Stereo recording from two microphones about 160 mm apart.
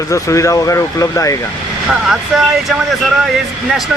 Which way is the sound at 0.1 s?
20° left (ahead or behind).